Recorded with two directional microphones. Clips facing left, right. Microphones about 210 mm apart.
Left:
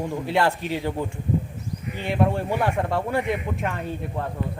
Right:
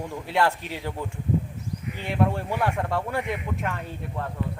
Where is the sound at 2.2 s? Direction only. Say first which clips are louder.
Left 2 dB; 15° left (ahead or behind).